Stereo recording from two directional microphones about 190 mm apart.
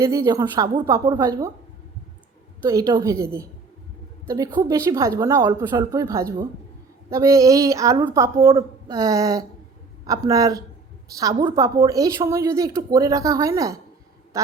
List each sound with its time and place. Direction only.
0.0 s a woman's voice: 15° right (ahead or behind)
2.6 s a woman's voice: 15° right (ahead or behind)
4.3 s a woman's voice: 15° right (ahead or behind)
14.3 s quack: 15° right (ahead or behind)